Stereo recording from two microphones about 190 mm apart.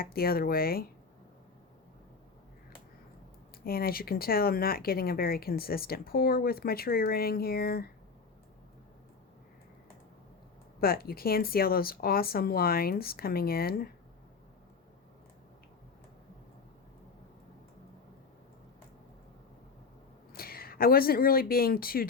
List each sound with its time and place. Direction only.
0.0 s speech: 50° left (ahead or behind)
3.6 s speech: 50° left (ahead or behind)
10.8 s speech: 50° left (ahead or behind)
20.3 s speech: 50° left (ahead or behind)